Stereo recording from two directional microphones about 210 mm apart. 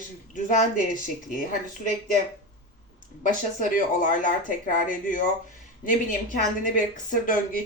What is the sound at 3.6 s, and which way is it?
Speech, 40° left (ahead or behind).